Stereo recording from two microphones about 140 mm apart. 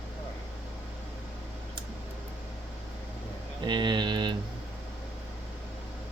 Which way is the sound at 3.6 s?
30° right (ahead or behind).